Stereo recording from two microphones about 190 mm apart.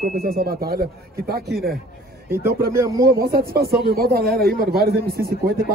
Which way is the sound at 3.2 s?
55° right (ahead or behind).